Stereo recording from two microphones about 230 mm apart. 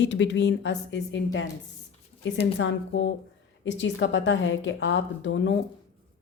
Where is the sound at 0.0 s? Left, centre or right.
Left.